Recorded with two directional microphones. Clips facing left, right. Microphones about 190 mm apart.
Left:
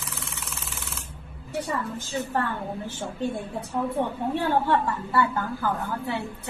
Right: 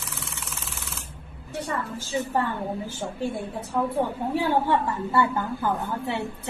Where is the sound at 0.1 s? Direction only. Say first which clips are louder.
Even; centre (ahead or behind).